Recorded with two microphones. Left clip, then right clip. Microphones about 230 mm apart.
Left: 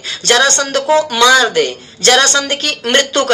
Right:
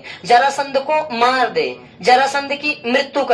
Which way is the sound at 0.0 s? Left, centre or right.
Left.